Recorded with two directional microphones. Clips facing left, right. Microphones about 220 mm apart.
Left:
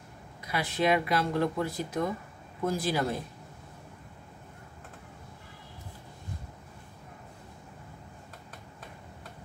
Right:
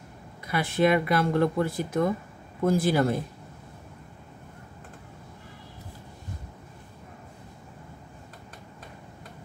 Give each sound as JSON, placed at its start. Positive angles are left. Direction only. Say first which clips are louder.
{"t": 0.5, "sound": "speech", "louder": "right 4 dB", "side_deg": -50}